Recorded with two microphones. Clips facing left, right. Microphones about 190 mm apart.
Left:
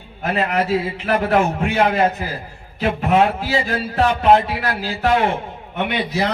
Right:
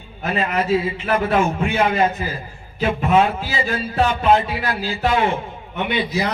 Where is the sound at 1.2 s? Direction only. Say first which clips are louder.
Left 1 dB; 70° left (ahead or behind).